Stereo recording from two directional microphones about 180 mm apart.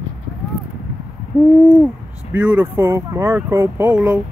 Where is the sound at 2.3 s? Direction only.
10° right (ahead or behind).